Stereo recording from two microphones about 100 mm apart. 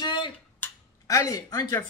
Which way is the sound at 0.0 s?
50° left (ahead or behind).